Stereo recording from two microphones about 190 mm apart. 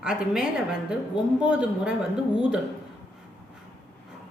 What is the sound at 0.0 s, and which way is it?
Speech, 5° right (ahead or behind).